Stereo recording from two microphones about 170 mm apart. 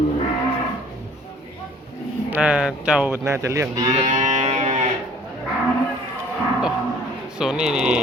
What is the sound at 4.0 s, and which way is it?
Cattle, 45° right (ahead or behind).